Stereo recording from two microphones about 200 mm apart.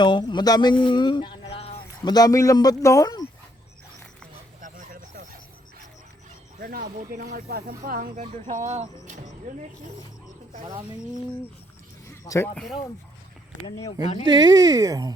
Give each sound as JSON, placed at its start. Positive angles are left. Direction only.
{"t": 0.0, "sound": "speech", "side_deg": 25}
{"t": 4.6, "sound": "a sound", "side_deg": -40}
{"t": 6.6, "sound": "speech", "side_deg": -45}
{"t": 12.0, "sound": "a sound", "side_deg": 15}
{"t": 13.7, "sound": "speech", "side_deg": 15}
{"t": 14.0, "sound": "speech", "side_deg": 30}
{"t": 14.3, "sound": "speech", "side_deg": -20}